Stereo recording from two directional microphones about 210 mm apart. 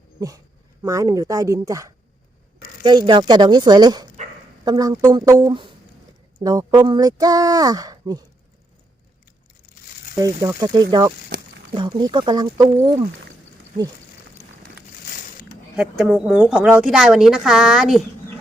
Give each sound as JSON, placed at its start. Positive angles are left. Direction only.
{"t": 0.2, "sound": "speech", "side_deg": -15}
{"t": 10.2, "sound": "speech", "side_deg": -15}
{"t": 15.7, "sound": "speech", "side_deg": -5}